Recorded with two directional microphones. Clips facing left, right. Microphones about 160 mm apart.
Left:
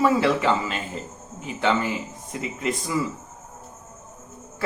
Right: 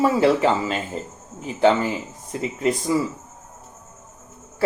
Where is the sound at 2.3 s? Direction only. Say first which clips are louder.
Right 5 dB; 35° right (ahead or behind).